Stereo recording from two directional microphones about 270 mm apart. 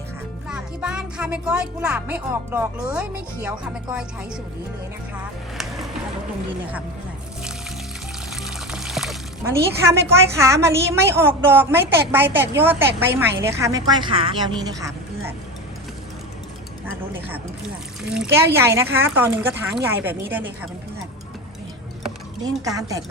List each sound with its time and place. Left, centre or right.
0.4 s speech: centre
5.5 s a sound: centre
8.4 s speech: centre
16.9 s speech: centre
22.4 s speech: centre